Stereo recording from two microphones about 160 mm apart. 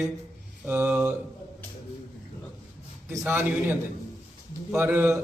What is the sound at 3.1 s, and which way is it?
A man's voice, 10° right (ahead or behind).